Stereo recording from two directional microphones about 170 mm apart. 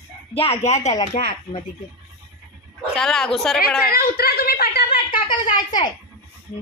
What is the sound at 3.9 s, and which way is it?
Speech, 60° left (ahead or behind).